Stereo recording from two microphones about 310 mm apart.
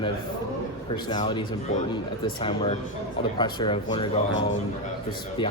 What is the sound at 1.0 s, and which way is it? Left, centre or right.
Speech, centre.